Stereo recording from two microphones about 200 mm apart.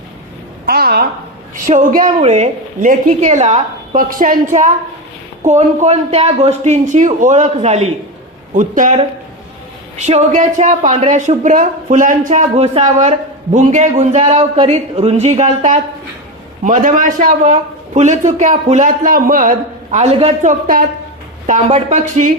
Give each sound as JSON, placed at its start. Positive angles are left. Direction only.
{"t": 0.6, "sound": "a sound", "side_deg": -50}
{"t": 1.5, "sound": "speech", "side_deg": -40}
{"t": 5.4, "sound": "speech", "side_deg": -35}
{"t": 10.1, "sound": "speech", "side_deg": -35}